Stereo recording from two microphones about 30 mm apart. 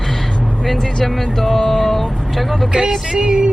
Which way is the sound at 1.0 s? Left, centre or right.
Centre.